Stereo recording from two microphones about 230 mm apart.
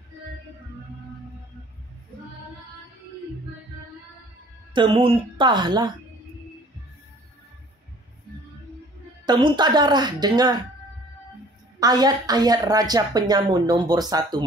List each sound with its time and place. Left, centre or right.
4.7 s speech: right
9.2 s a woman's voice: centre
11.8 s a woman's voice: centre